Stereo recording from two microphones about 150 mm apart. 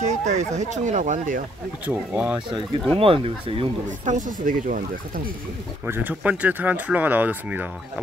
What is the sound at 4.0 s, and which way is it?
Speech, 60° right (ahead or behind).